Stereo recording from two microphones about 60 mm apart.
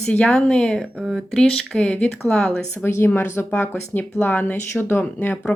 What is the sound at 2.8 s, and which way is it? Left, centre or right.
Speech, left.